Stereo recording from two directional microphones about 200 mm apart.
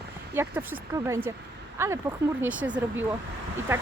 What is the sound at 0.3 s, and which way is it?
Speech, 10° right (ahead or behind).